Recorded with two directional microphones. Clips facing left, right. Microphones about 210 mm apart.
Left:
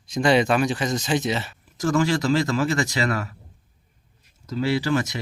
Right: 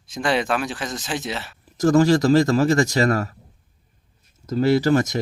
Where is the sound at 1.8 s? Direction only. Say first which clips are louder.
Right 6 dB; 40° right (ahead or behind).